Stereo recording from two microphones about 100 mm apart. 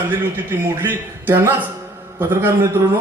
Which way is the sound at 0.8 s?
20° right (ahead or behind).